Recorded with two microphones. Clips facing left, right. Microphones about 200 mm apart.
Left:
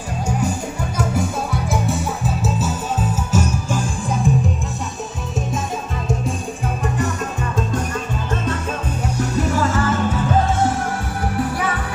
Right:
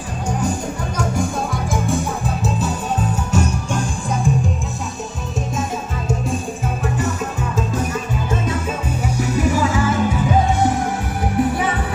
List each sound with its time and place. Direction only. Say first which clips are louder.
0.3 s music: right 1 dB; 10° left (ahead or behind)
7.5 s music: right 1 dB; 5° right (ahead or behind); by 11.7 s 20° right (ahead or behind)